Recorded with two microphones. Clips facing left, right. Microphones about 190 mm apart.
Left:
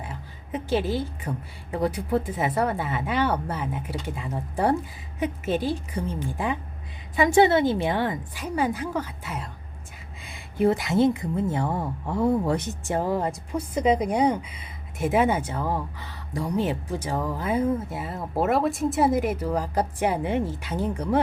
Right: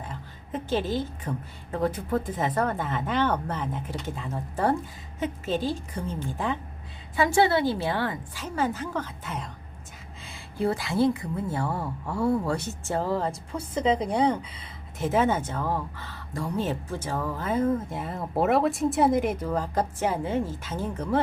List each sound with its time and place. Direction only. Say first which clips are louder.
0.0 s speech: left 1 dB; 10° left (ahead or behind)